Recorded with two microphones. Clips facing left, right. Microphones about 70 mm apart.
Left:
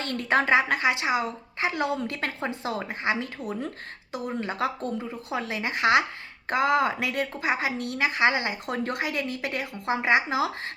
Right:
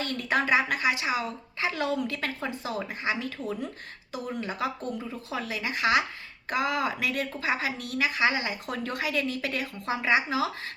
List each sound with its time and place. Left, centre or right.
0.0 s a woman's voice: left
2.0 s a woman's voice: left